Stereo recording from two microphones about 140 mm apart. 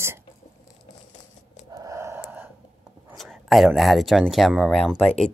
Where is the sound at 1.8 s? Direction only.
20° right (ahead or behind).